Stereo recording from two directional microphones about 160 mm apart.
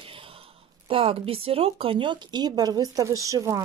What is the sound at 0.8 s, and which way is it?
Speech, 35° right (ahead or behind).